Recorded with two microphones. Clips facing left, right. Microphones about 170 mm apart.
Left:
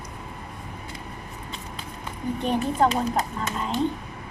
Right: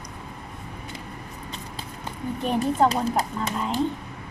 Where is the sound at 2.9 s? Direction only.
30° right (ahead or behind).